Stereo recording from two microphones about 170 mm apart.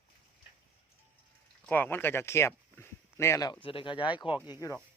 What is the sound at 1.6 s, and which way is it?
Speech, 10° left (ahead or behind).